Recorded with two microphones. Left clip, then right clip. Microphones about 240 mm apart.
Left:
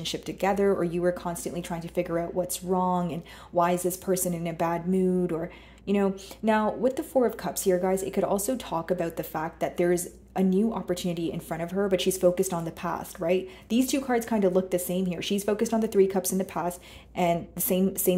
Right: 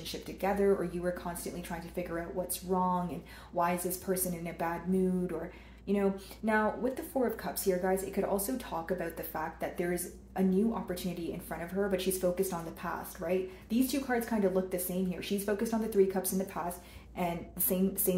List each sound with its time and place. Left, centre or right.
0.0 s speech: left